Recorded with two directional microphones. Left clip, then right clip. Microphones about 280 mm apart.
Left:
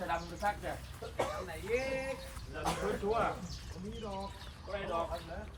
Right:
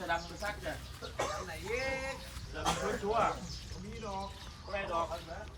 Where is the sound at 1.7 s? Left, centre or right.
Right.